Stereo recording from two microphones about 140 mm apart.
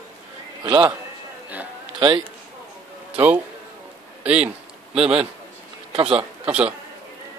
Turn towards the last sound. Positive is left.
turn(degrees=-10)  # may be behind; listen again after turning